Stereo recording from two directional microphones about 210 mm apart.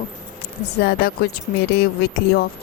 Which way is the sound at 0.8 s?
50° left (ahead or behind).